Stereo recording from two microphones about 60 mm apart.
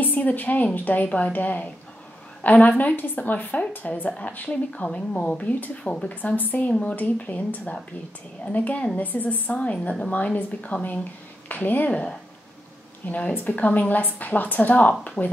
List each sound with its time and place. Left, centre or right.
0.0 s a woman's voice: left
6.7 s a woman's voice: centre
11.9 s speech: centre
13.3 s a woman's voice: left